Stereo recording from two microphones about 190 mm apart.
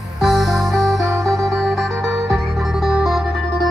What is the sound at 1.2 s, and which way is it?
Music, 15° right (ahead or behind).